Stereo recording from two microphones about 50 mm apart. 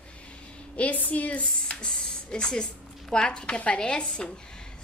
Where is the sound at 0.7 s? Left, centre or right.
Left.